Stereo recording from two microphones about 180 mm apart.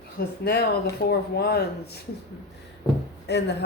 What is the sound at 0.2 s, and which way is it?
A woman's voice, 65° left (ahead or behind).